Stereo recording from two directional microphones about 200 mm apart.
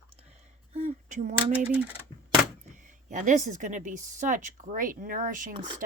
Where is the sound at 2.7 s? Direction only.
40° right (ahead or behind).